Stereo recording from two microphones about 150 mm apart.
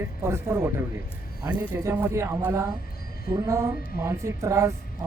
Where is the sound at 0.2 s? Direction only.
15° right (ahead or behind).